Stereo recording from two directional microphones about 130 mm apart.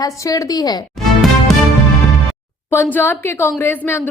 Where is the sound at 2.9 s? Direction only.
15° left (ahead or behind).